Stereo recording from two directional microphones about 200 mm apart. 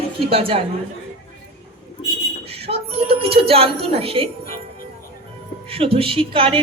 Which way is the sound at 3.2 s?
30° right (ahead or behind).